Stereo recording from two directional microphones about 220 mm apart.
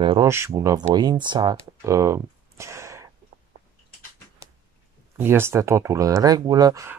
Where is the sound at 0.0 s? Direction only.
25° right (ahead or behind).